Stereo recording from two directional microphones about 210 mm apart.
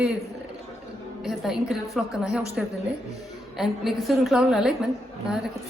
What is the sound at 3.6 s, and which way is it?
A woman's voice, centre (ahead or behind).